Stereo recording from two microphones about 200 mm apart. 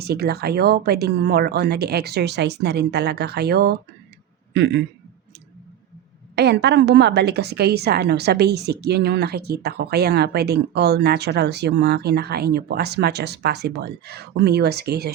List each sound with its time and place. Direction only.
0.0 s a woman's voice: 55° right (ahead or behind)
6.3 s a woman's voice: 55° right (ahead or behind)